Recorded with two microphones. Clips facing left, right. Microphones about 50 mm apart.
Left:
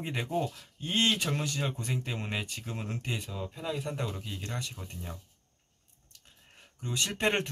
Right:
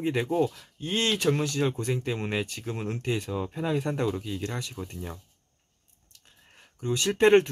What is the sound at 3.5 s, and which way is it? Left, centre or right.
Speech, right.